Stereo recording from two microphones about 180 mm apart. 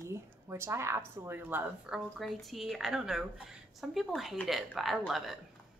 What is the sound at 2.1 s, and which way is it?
A woman's voice, centre (ahead or behind).